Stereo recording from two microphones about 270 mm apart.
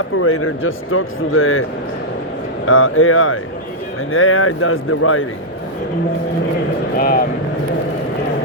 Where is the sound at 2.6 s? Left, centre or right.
Left.